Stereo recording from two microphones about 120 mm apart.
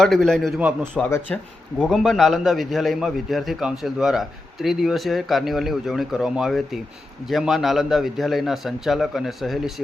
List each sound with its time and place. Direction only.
0.0 s a man's voice: 5° left (ahead or behind)
1.0 s speech: 15° left (ahead or behind)
1.8 s a man's voice: 5° left (ahead or behind)